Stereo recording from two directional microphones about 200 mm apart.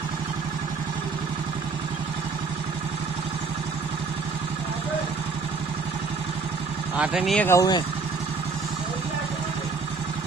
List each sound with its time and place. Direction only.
7.0 s speech: centre (ahead or behind)
7.4 s speech: 15° left (ahead or behind)